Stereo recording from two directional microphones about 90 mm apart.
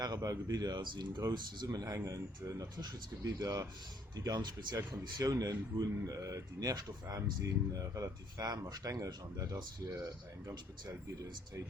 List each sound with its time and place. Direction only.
0.0 s speech: 45° right (ahead or behind)